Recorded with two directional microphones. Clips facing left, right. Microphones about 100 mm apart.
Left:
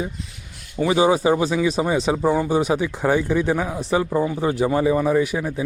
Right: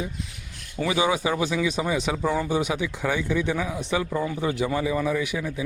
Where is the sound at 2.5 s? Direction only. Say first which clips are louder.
Left 5 dB; 35° left (ahead or behind).